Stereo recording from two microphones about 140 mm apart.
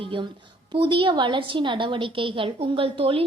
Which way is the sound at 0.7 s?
40° right (ahead or behind).